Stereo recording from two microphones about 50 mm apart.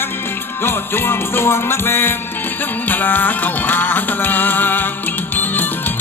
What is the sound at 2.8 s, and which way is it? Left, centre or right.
Music, left.